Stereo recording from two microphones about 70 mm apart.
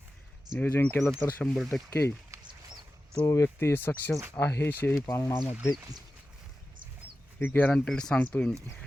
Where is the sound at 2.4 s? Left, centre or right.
Right.